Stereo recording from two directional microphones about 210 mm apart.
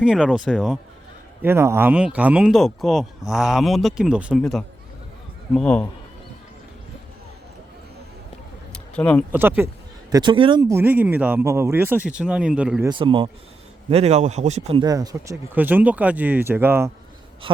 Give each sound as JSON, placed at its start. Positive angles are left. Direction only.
{"t": 0.0, "sound": "speech", "side_deg": -5}
{"t": 8.7, "sound": "a sound", "side_deg": 5}
{"t": 9.3, "sound": "speech", "side_deg": -10}
{"t": 10.1, "sound": "speech", "side_deg": -20}
{"t": 12.9, "sound": "speech", "side_deg": -25}